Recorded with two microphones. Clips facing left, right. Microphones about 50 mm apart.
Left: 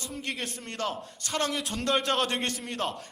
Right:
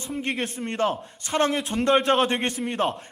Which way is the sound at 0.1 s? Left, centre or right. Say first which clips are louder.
Right 9 dB; right.